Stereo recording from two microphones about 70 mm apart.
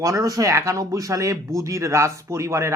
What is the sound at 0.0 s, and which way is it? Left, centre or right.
Speech, right.